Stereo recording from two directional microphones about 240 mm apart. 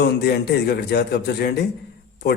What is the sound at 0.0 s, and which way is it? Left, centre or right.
A man's voice, left.